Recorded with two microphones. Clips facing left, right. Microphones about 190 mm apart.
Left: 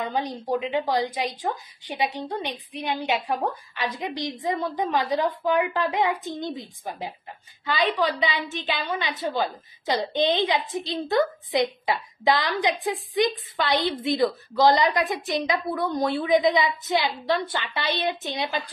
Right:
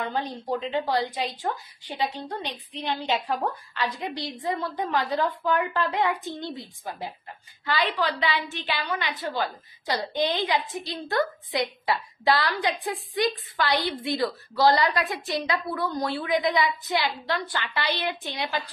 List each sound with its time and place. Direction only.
0.0 s a woman's voice: 15° left (ahead or behind)